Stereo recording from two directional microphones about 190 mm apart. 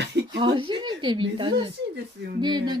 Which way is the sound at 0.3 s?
25° right (ahead or behind).